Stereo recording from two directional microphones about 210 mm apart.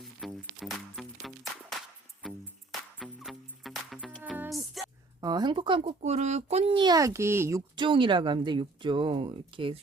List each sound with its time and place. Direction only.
0.0 s music: centre (ahead or behind)
3.0 s music: centre (ahead or behind)
5.2 s a child's voice: 20° right (ahead or behind)